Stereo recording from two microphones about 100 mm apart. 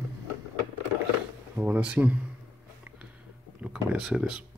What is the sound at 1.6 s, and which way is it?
Speech, 15° right (ahead or behind).